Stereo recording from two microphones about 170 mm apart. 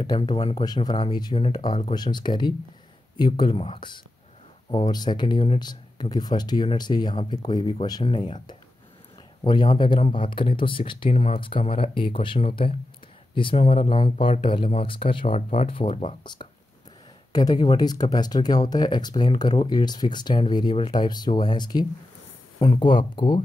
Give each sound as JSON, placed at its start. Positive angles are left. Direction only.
{"t": 0.0, "sound": "speech", "side_deg": 25}
{"t": 17.3, "sound": "speech", "side_deg": 25}